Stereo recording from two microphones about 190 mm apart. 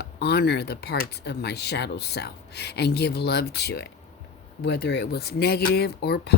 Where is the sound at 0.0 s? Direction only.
60° left (ahead or behind).